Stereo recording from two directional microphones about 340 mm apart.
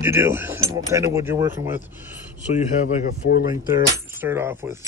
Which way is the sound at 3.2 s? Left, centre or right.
Left.